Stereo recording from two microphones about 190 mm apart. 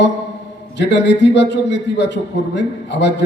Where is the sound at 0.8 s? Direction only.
65° left (ahead or behind).